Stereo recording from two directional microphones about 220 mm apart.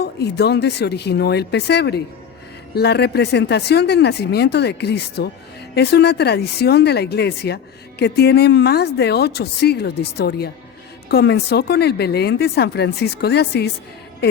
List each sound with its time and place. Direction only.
0.0 s speech: 50° left (ahead or behind)